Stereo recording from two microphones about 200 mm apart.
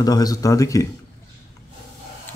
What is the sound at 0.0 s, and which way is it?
Speech, 20° left (ahead or behind).